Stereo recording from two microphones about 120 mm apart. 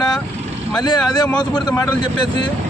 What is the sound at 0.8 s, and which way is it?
Speech, 35° left (ahead or behind).